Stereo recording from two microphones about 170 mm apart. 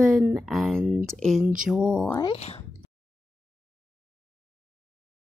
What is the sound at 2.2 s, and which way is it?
Speech, 35° left (ahead or behind).